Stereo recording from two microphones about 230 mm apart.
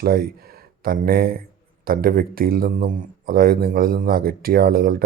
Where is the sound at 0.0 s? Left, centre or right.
Right.